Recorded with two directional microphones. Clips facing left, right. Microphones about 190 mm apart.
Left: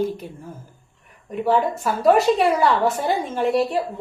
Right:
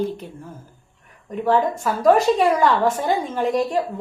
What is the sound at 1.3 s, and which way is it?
A woman's voice, 5° left (ahead or behind).